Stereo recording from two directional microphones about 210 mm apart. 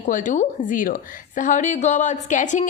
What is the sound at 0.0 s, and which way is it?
A woman's voice, 35° left (ahead or behind).